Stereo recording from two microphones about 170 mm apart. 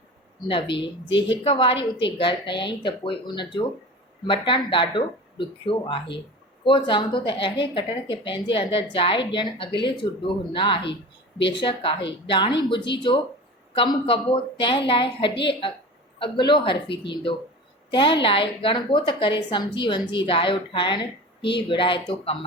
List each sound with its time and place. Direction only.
0.4 s a woman's voice: 30° left (ahead or behind)
17.9 s a woman's voice: 30° left (ahead or behind)